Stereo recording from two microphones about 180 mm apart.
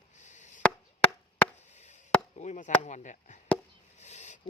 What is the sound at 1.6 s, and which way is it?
Chop, 40° left (ahead or behind).